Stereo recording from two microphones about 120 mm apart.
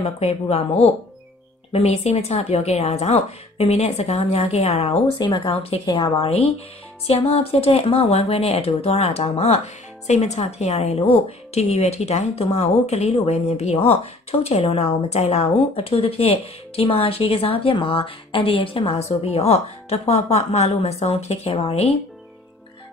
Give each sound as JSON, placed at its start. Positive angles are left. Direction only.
{"t": 0.0, "sound": "speech", "side_deg": 60}
{"t": 1.7, "sound": "speech", "side_deg": 60}
{"t": 5.9, "sound": "a woman's voice", "side_deg": 30}
{"t": 7.1, "sound": "speech", "side_deg": 55}